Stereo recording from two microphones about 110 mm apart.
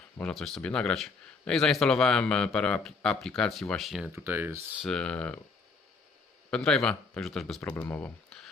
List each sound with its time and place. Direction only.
0.2 s speech: 5° left (ahead or behind)
4.1 s speech: 20° right (ahead or behind)
4.8 s speech: 5° left (ahead or behind)
6.5 s speech: 5° left (ahead or behind)
7.9 s speech: 15° left (ahead or behind)